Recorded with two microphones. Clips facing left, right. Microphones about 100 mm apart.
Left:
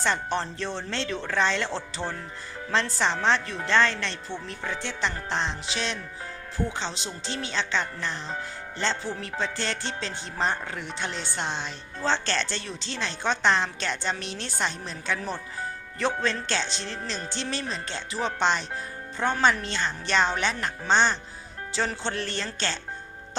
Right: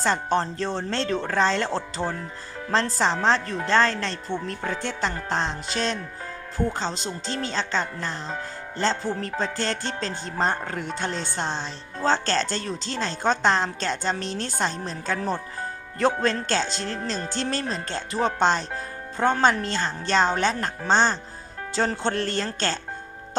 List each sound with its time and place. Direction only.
0.0 s music: 40° right (ahead or behind)
16.2 s speech: 40° right (ahead or behind)
17.1 s music: 40° right (ahead or behind)